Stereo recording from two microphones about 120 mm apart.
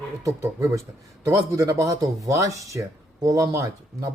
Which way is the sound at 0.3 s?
25° right (ahead or behind).